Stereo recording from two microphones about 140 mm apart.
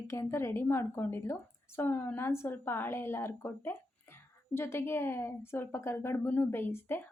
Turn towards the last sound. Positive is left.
turn(degrees=15)  # may be behind; listen again after turning